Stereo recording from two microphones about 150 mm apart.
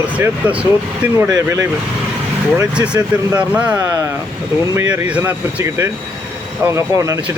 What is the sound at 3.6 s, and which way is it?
Speech, 25° right (ahead or behind).